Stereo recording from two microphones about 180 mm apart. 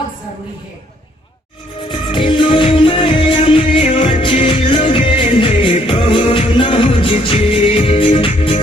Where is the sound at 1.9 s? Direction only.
25° left (ahead or behind).